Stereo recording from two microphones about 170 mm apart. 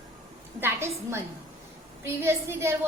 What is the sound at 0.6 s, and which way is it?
A woman's voice, 15° right (ahead or behind).